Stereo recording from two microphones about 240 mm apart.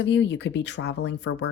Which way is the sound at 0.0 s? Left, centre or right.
Left.